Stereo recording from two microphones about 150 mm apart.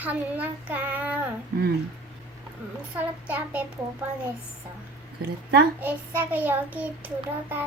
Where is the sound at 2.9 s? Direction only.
10° right (ahead or behind).